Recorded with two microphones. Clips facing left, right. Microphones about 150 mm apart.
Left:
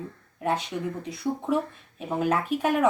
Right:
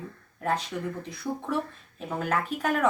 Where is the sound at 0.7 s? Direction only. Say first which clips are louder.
Left 2 dB; 25° left (ahead or behind).